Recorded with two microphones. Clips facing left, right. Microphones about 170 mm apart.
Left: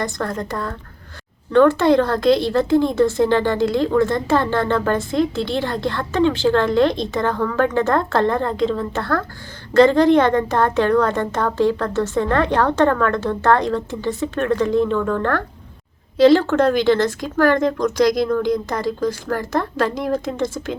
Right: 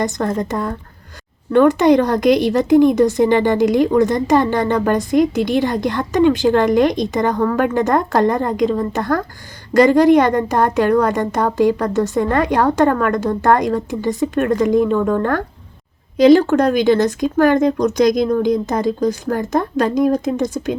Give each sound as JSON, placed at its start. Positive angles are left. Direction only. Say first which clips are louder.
{"t": 0.0, "sound": "a woman's voice", "louder": "right 5 dB", "side_deg": -20}